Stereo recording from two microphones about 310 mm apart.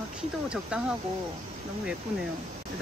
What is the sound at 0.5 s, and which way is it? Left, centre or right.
Speech, centre.